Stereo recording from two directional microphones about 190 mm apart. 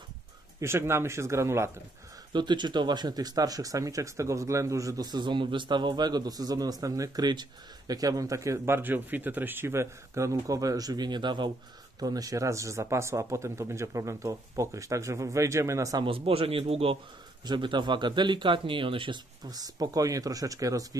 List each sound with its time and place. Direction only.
0.6 s speech: 15° right (ahead or behind)